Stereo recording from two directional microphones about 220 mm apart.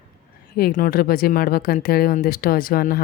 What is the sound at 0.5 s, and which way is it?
Speech, 40° left (ahead or behind).